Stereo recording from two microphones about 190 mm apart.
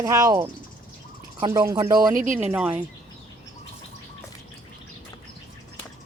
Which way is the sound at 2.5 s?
5° right (ahead or behind).